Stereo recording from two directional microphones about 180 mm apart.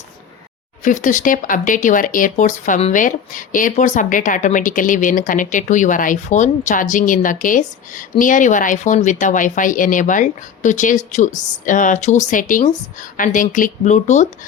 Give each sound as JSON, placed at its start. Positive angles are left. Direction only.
{"t": 0.9, "sound": "speech", "side_deg": 45}